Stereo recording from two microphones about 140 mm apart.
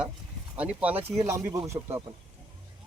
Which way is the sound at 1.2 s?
20° right (ahead or behind).